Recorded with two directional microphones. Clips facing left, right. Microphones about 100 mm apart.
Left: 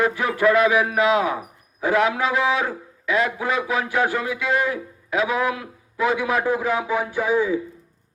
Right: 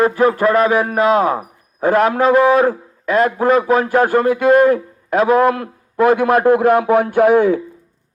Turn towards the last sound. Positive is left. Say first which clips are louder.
# right 9 dB
turn(degrees=-65)  # may be behind; listen again after turning